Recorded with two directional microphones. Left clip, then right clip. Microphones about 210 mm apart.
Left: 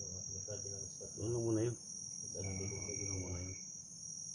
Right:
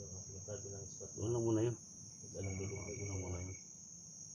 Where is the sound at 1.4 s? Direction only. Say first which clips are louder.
Right 1 dB; 5° left (ahead or behind).